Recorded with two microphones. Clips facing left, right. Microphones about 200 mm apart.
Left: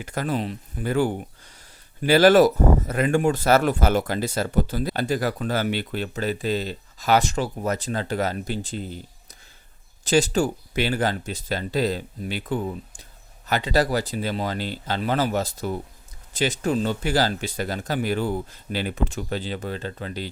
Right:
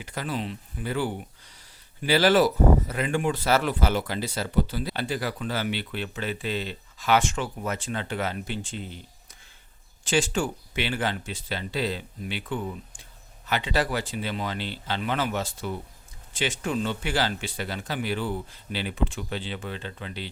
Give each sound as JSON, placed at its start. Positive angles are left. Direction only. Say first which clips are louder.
{"t": 0.0, "sound": "speech", "louder": "left 5 dB", "side_deg": 45}
{"t": 10.0, "sound": "speech", "louder": "left 5 dB", "side_deg": 40}